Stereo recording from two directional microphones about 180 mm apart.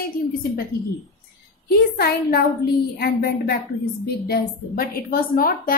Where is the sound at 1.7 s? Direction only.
60° left (ahead or behind).